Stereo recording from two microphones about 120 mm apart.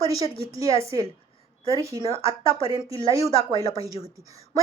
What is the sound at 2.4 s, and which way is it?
Speech, 45° left (ahead or behind).